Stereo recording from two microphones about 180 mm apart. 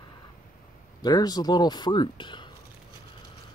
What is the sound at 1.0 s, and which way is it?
Speech, 20° left (ahead or behind).